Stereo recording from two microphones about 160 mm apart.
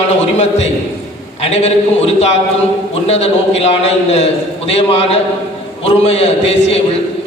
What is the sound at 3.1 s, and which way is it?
Speech, 40° left (ahead or behind).